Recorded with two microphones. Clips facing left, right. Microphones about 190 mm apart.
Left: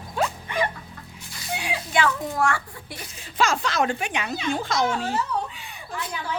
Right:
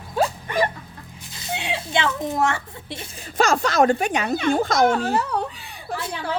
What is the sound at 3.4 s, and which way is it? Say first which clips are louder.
A child's voice: right 5 dB; 45° right (ahead or behind).